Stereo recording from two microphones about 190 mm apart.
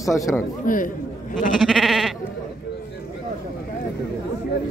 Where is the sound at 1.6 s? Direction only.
Centre (ahead or behind).